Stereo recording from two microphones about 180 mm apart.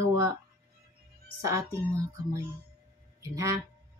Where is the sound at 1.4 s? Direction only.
15° right (ahead or behind).